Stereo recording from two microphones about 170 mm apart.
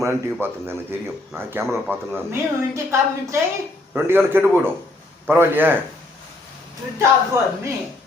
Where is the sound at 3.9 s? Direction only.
15° right (ahead or behind).